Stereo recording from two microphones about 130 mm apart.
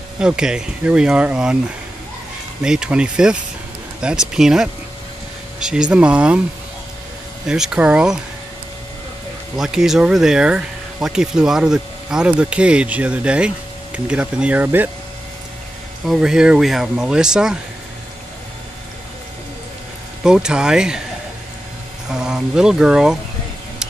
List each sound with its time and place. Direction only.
0.2 s speech: 5° right (ahead or behind)
2.6 s speech: 5° right (ahead or behind)
7.4 s speech: 5° right (ahead or behind)
9.6 s speech: 5° right (ahead or behind)
16.1 s speech: 5° right (ahead or behind)
20.2 s speech: 5° right (ahead or behind)
22.1 s speech: 5° right (ahead or behind)